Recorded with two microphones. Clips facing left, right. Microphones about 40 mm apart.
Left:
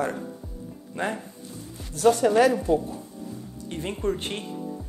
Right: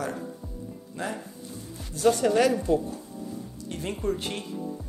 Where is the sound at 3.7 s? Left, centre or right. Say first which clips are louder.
Left 1 dB; left.